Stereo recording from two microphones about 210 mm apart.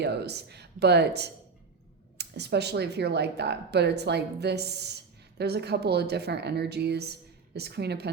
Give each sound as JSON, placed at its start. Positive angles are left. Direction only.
{"t": 0.0, "sound": "speech", "side_deg": -50}